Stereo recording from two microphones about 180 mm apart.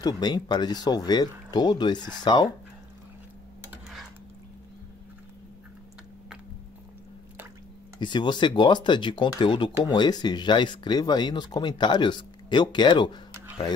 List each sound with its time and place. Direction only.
0.0 s speech: 25° left (ahead or behind)
8.0 s speech: 25° left (ahead or behind)